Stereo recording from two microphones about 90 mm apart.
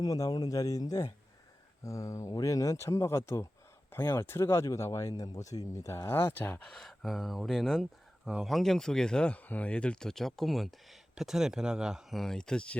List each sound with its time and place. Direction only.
0.0 s speech: 45° left (ahead or behind); by 6.6 s 25° left (ahead or behind)
6.7 s speech: centre (ahead or behind)
12.2 s speech: 5° left (ahead or behind)